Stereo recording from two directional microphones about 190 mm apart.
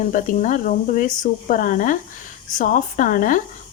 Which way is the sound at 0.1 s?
45° left (ahead or behind).